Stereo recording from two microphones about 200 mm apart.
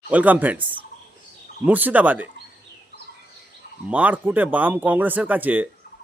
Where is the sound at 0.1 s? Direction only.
10° right (ahead or behind).